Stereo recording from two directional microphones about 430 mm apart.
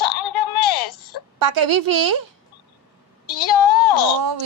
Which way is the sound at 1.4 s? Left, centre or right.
Right.